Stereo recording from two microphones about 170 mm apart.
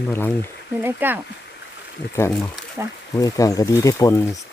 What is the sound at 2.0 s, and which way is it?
Speech, 90° left.